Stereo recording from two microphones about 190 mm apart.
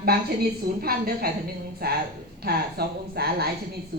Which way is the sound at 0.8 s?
55° right (ahead or behind).